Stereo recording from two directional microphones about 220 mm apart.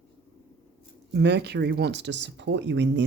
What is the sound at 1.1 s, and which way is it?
Speech, 50° right (ahead or behind).